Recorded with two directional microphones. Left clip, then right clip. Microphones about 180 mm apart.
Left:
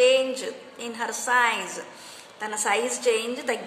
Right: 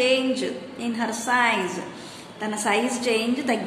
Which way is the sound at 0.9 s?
30° left (ahead or behind).